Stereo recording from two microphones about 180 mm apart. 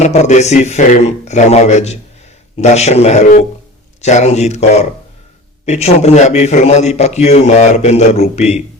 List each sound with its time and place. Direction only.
0.0 s a man's voice: 40° left (ahead or behind)